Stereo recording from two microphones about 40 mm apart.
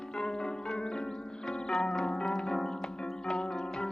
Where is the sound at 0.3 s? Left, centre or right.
Centre.